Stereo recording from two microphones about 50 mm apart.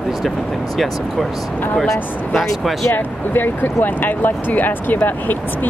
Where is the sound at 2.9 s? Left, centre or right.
Left.